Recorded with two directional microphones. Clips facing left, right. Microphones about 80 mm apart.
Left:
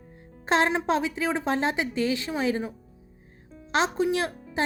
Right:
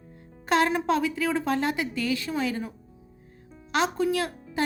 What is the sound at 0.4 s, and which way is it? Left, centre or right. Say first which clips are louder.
A woman's voice: even; left.